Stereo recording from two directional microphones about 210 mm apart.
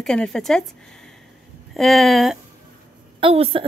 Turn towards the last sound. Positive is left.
turn(degrees=-25)  # may be behind; listen again after turning